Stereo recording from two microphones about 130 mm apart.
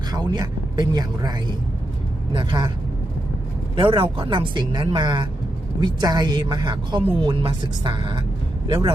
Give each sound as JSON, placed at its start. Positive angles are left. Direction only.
{"t": 0.1, "sound": "speech", "side_deg": -30}
{"t": 3.8, "sound": "speech", "side_deg": -45}